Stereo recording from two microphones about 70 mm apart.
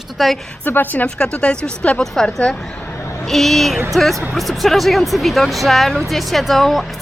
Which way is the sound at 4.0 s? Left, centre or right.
Centre.